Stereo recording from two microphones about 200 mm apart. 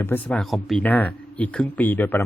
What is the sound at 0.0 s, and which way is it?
Speech, 5° left (ahead or behind).